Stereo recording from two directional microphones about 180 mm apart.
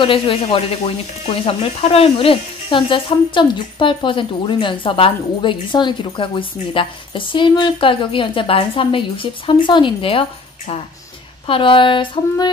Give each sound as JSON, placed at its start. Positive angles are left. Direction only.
{"t": 0.0, "sound": "speech", "side_deg": 30}
{"t": 11.4, "sound": "speech", "side_deg": 30}